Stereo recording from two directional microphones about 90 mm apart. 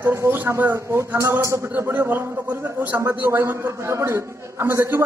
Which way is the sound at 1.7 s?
20° right (ahead or behind).